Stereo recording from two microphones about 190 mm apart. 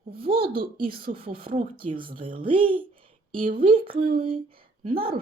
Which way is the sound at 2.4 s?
30° right (ahead or behind).